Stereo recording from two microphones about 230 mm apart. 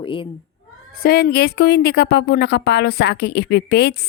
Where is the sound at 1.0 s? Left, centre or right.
Left.